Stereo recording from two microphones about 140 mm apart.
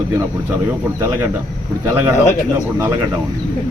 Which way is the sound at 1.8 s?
15° right (ahead or behind).